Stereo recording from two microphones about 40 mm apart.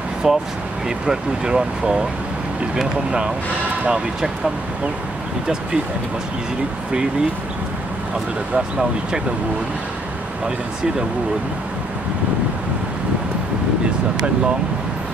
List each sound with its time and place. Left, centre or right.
0.2 s speech: centre